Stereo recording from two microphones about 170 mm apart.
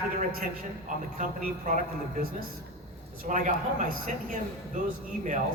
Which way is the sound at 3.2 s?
50° right (ahead or behind).